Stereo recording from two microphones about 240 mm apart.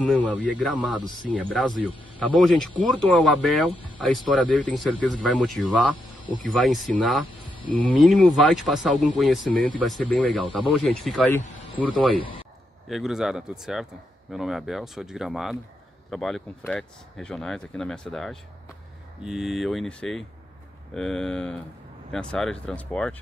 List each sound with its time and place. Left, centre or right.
0.0 s speech: centre
1.0 s speech: centre
1.3 s speech: centre
12.8 s speech: centre